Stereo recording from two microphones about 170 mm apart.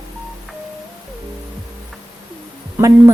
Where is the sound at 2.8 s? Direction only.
20° right (ahead or behind).